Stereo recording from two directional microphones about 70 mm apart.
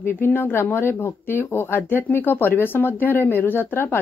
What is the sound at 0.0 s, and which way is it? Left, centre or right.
Speech, left.